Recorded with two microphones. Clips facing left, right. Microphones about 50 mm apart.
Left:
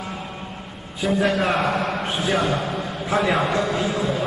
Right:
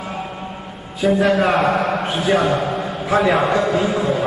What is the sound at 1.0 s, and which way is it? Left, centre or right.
A man's voice, centre.